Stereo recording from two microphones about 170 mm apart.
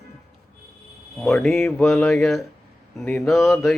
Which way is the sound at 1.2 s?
5° left (ahead or behind).